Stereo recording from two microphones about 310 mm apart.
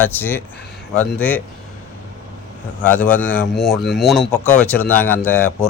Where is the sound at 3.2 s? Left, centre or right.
Centre.